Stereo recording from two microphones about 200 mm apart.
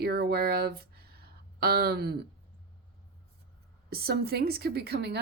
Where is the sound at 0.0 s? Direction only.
50° right (ahead or behind).